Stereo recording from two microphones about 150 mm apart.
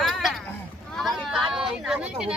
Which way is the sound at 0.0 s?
Centre (ahead or behind).